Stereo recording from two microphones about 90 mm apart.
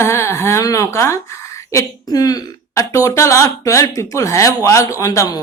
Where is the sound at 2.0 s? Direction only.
45° left (ahead or behind).